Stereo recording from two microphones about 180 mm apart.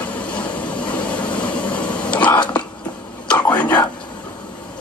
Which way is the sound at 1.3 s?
5° left (ahead or behind).